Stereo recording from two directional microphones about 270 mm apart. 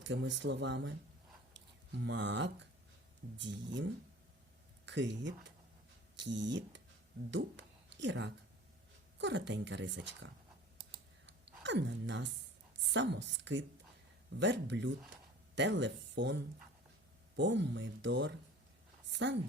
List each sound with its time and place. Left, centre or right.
0.0 s speech: right
4.9 s speech: right
11.3 s a sound: right
12.8 s a woman's voice: right